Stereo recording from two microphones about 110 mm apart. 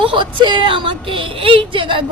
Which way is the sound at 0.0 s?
50° right (ahead or behind).